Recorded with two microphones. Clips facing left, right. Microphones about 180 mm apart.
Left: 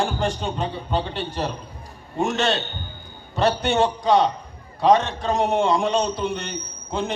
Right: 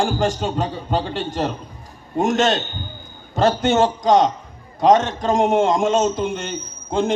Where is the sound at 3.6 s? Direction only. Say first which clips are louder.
Right 4 dB; 45° right (ahead or behind).